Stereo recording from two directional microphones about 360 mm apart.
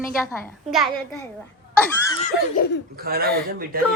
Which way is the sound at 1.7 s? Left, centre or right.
Centre.